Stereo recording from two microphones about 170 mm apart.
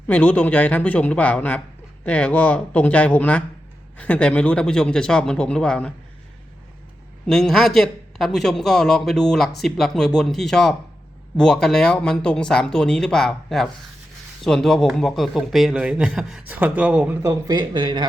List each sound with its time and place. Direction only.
0.1 s speech: 10° left (ahead or behind)
7.3 s speech: centre (ahead or behind)
17.5 s speech: 25° right (ahead or behind)